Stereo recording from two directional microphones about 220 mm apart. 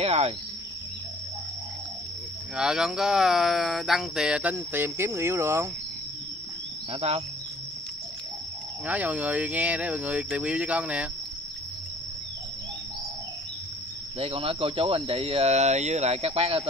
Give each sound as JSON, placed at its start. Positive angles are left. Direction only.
{"t": 0.0, "sound": "cricket", "side_deg": -30}
{"t": 2.5, "sound": "speech", "side_deg": 0}
{"t": 6.9, "sound": "speech", "side_deg": -30}
{"t": 8.8, "sound": "speech", "side_deg": -5}
{"t": 14.1, "sound": "speech", "side_deg": -25}